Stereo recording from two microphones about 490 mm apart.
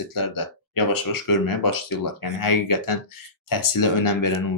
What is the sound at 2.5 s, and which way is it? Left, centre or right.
Speech, left.